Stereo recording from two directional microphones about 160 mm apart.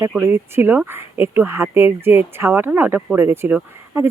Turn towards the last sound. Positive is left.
turn(degrees=-10)  # may be behind; listen again after turning